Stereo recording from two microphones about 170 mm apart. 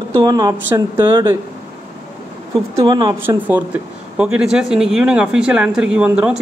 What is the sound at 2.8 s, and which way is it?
Speech, 25° right (ahead or behind).